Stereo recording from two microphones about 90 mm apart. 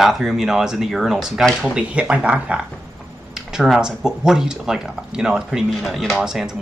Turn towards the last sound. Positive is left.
turn(degrees=-5)  # may be behind; listen again after turning